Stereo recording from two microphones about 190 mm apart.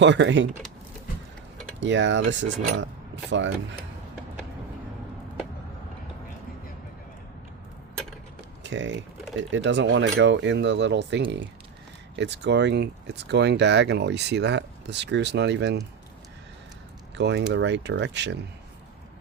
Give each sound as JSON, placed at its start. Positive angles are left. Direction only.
{"t": 0.0, "sound": "speech", "side_deg": -70}
{"t": 1.8, "sound": "speech", "side_deg": -70}
{"t": 8.6, "sound": "speech", "side_deg": -70}
{"t": 17.2, "sound": "speech", "side_deg": -70}